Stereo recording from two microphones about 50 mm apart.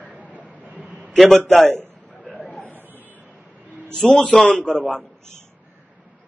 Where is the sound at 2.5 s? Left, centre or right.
Left.